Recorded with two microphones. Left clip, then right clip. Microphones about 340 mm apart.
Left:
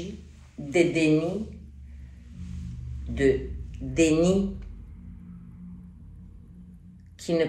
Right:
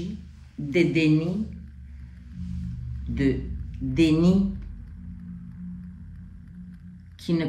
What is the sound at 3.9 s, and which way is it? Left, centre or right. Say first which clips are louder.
Speech: even; centre.